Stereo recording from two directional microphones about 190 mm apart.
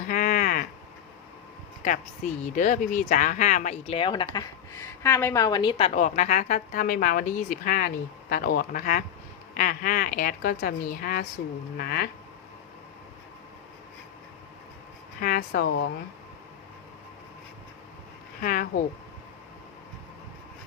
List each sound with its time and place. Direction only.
0.1 s a sound: 50° left (ahead or behind)
2.4 s speech: 40° left (ahead or behind); by 4.3 s 25° left (ahead or behind)
4.4 s a woman's voice: 15° left (ahead or behind); by 12.0 s 50° left (ahead or behind)
15.2 s speech: 50° left (ahead or behind)
18.4 s a woman's voice: 50° left (ahead or behind)